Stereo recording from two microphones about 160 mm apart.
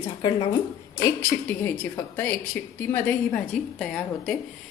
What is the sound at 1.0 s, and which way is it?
A woman's voice, 15° left (ahead or behind).